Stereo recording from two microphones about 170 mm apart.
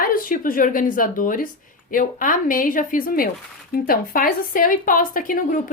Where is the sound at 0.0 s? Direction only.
55° left (ahead or behind).